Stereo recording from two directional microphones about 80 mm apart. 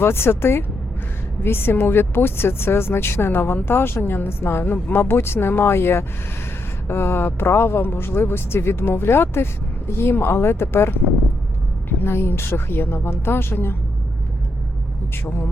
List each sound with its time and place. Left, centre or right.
0.0 s speech: left
15.1 s speech: left